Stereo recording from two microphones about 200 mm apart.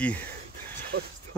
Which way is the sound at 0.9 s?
50° right (ahead or behind).